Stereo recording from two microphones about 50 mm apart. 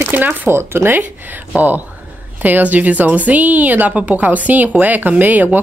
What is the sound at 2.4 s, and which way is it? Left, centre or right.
A woman's voice, right.